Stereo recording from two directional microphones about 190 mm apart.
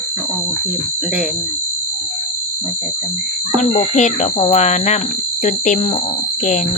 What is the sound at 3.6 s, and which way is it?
Speech, 40° left (ahead or behind).